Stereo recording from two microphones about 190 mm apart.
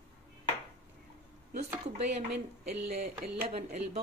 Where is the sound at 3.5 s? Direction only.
35° right (ahead or behind).